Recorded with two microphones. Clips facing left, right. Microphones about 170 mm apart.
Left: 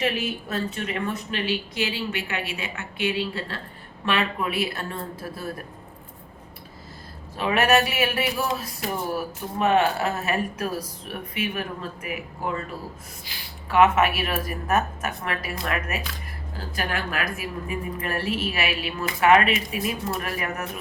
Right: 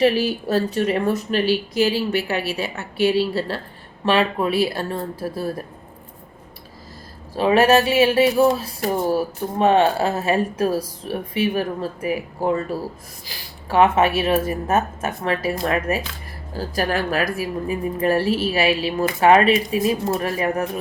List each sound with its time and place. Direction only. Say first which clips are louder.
0.0 s a woman's voice: right 9 dB; 35° right (ahead or behind)
7.3 s a woman's voice: right 6 dB; 30° right (ahead or behind)